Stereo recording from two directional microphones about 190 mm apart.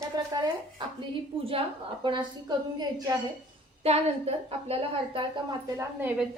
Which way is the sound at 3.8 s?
30° right (ahead or behind).